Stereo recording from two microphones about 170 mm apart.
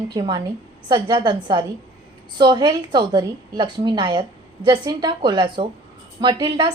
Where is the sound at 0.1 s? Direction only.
25° right (ahead or behind).